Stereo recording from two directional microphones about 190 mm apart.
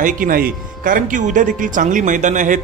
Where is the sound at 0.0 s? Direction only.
45° right (ahead or behind).